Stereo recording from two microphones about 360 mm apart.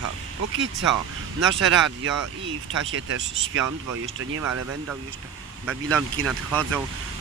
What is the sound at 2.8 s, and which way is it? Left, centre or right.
Speech, right.